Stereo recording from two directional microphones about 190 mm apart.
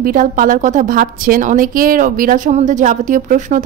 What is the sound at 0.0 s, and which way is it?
A woman's voice, 45° right (ahead or behind).